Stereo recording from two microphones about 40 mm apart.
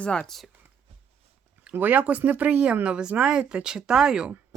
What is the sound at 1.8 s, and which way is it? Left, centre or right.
Speech, right.